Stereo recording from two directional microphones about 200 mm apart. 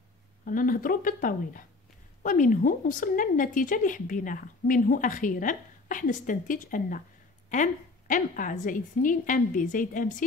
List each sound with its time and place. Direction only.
0.5 s a woman's voice: 45° left (ahead or behind)